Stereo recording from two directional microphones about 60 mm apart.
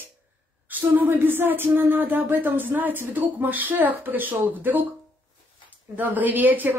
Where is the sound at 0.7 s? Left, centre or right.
Right.